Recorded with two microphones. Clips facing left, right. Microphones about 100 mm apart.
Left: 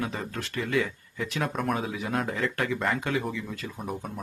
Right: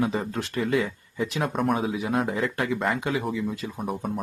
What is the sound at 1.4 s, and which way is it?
Speech, centre (ahead or behind).